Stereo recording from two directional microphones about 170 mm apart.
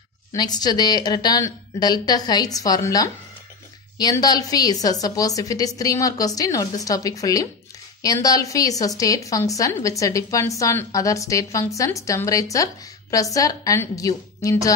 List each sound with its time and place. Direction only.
0.3 s a woman's voice: 25° left (ahead or behind)